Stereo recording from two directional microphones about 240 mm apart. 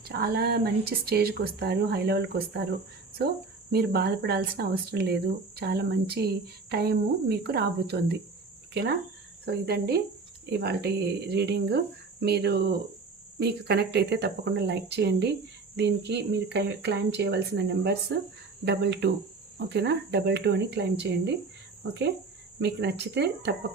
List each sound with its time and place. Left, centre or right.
0.0 s speech: right
9.5 s speech: right
22.6 s speech: right